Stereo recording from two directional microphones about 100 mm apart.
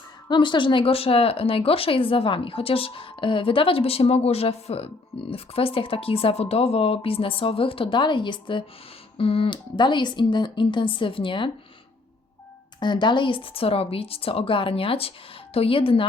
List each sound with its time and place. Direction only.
0.3 s speech: 55° left (ahead or behind)
9.1 s speech: 70° left (ahead or behind)
12.8 s speech: 50° left (ahead or behind)